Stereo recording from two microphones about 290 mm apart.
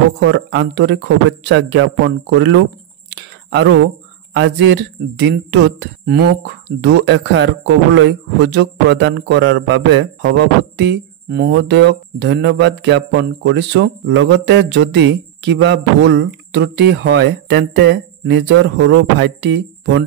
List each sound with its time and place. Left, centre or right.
0.2 s speech: right
3.1 s whispering: right
4.4 s speech: right